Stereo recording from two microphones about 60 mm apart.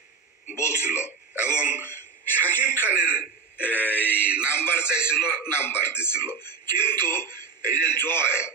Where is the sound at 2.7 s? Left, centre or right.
Right.